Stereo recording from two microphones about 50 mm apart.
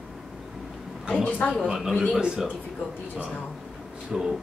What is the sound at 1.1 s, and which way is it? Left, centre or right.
Speech, left.